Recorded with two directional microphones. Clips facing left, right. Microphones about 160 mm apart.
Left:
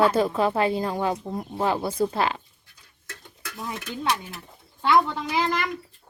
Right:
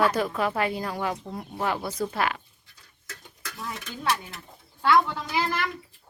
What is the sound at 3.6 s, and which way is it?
A woman's voice, 10° left (ahead or behind).